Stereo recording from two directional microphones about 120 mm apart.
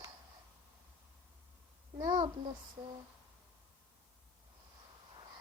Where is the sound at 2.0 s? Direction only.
35° right (ahead or behind).